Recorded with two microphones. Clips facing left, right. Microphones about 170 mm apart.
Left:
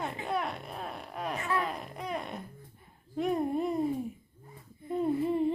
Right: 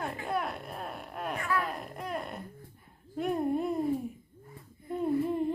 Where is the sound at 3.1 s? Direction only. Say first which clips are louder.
Even; centre (ahead or behind).